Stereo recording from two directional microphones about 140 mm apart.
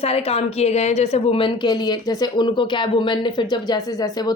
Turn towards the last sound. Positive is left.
turn(degrees=25)  # may be behind; listen again after turning